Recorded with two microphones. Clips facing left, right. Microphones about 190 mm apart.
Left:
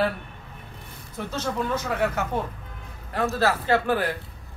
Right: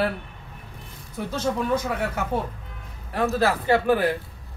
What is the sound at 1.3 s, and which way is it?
Speech, 10° right (ahead or behind).